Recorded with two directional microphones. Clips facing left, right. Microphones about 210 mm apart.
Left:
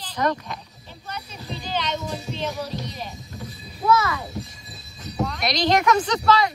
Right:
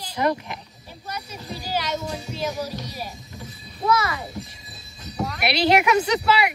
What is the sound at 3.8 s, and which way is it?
A child's voice, 5° right (ahead or behind).